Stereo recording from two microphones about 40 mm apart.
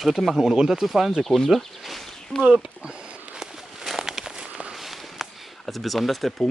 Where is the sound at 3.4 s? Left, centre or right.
Centre.